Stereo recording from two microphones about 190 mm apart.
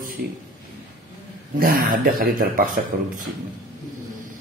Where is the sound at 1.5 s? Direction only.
50° right (ahead or behind).